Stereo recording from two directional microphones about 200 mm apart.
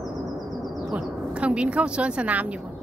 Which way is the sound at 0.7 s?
Centre (ahead or behind).